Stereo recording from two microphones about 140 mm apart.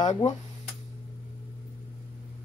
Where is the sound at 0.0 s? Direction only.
55° left (ahead or behind).